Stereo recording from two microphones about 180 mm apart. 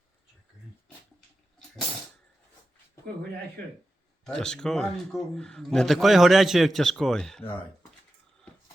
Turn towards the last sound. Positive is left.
turn(degrees=5)  # may be behind; listen again after turning